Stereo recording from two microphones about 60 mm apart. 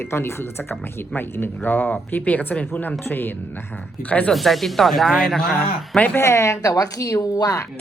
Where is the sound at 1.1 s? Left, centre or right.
Left.